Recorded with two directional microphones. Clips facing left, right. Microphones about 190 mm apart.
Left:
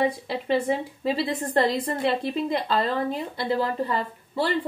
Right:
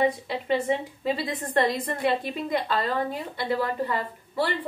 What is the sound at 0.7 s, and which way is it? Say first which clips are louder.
A woman's voice: left 1 dB; 30° left (ahead or behind).